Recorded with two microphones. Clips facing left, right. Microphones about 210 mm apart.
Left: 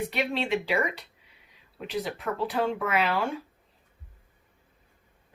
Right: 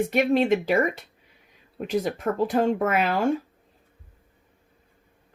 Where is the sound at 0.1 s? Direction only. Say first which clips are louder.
Right 8 dB; 45° right (ahead or behind).